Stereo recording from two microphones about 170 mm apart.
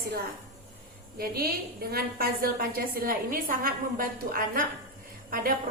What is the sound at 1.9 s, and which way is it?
A woman's voice, 65° right (ahead or behind).